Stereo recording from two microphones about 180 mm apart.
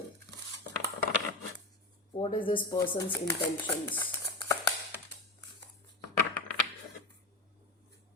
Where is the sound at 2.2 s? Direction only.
30° left (ahead or behind).